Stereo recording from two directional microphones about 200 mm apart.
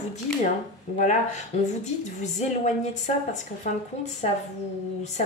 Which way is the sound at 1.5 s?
35° left (ahead or behind).